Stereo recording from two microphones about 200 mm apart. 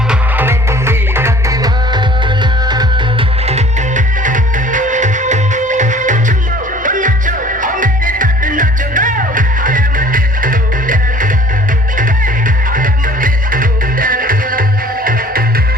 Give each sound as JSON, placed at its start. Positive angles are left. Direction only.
{"t": 0.1, "sound": "music", "side_deg": -10}
{"t": 12.7, "sound": "music", "side_deg": -45}